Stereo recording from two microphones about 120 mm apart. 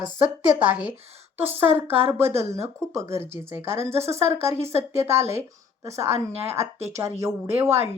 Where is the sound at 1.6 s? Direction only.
15° right (ahead or behind).